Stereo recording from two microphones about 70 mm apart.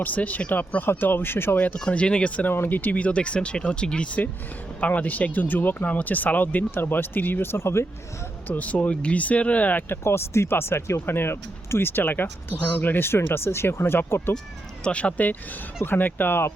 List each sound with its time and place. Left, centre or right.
0.0 s speech: left
1.5 s speech: centre
2.5 s speech: left
8.4 s speech: left
10.0 s speech: left
14.8 s speech: centre